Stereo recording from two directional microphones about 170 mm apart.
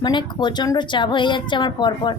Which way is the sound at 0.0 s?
25° left (ahead or behind).